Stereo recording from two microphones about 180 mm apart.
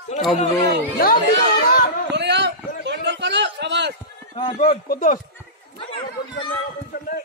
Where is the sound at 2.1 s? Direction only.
75° right (ahead or behind).